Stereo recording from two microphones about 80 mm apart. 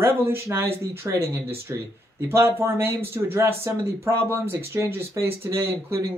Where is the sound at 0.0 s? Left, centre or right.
Right.